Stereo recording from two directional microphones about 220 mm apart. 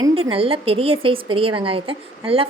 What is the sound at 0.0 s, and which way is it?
A woman's voice, 25° right (ahead or behind).